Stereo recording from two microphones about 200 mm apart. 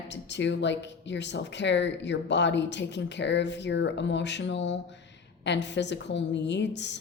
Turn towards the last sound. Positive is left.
turn(degrees=60)  # may be behind; listen again after turning